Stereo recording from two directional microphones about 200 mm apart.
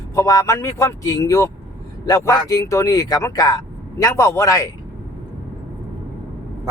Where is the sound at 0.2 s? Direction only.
15° left (ahead or behind).